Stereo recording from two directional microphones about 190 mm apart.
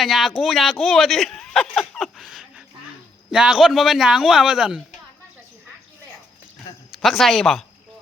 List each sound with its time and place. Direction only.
0.0 s a man's voice: centre (ahead or behind)
6.9 s a man's voice: centre (ahead or behind)